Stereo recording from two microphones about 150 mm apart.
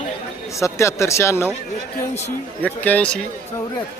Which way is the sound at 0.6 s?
20° left (ahead or behind).